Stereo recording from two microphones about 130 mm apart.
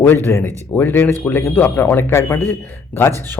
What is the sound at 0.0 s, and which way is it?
Speech, 15° left (ahead or behind).